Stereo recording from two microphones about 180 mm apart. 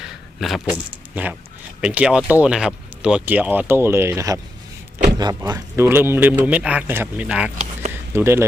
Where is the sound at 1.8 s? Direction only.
5° right (ahead or behind).